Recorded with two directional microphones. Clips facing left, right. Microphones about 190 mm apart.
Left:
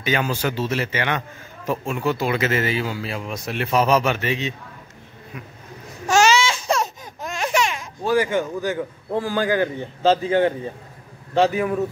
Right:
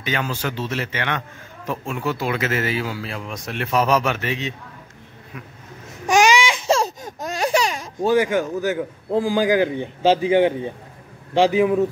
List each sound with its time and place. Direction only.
0.0 s a man's voice: 10° left (ahead or behind)
6.0 s baby cry: 15° right (ahead or behind)
7.0 s a sound: 40° right (ahead or behind)
8.1 s a man's voice: 10° right (ahead or behind)